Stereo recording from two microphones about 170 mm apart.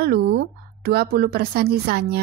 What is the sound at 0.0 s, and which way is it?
A woman's voice, 65° right (ahead or behind).